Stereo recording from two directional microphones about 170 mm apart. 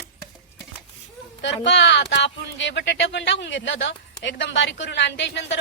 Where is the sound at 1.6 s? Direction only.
90° left.